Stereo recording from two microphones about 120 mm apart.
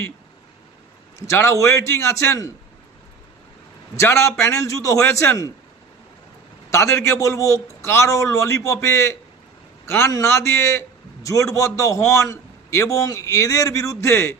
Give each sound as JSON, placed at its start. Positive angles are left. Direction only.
{"t": 1.3, "sound": "a man's voice", "side_deg": 25}
{"t": 3.9, "sound": "a man's voice", "side_deg": 25}
{"t": 6.7, "sound": "a man's voice", "side_deg": 25}